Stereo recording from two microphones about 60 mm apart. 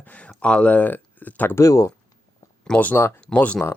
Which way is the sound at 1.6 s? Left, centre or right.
Left.